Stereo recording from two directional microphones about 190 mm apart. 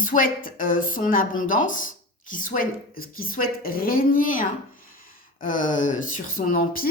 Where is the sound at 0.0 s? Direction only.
45° left (ahead or behind).